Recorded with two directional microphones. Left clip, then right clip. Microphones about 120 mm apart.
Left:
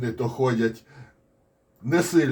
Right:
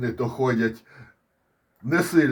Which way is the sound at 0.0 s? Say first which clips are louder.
Even; 45° right (ahead or behind).